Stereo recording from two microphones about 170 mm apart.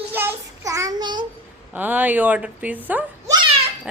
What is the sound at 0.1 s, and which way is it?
Child singing, 10° right (ahead or behind).